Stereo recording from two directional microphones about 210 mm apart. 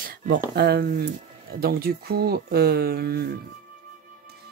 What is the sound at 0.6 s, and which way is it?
Speech, 50° right (ahead or behind).